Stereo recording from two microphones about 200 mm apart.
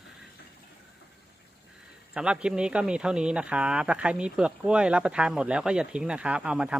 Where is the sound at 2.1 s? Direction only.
5° right (ahead or behind).